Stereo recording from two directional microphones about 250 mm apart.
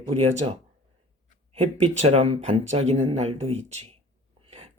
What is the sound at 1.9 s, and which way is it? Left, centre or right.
Speech, right.